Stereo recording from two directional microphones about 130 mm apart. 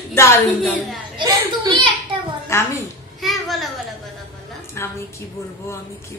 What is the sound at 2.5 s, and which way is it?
Speech, 20° left (ahead or behind).